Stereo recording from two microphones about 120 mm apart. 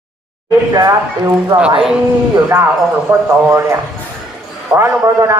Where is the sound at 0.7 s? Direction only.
30° right (ahead or behind).